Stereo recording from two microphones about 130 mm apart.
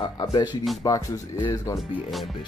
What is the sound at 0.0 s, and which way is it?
Speech, 40° left (ahead or behind).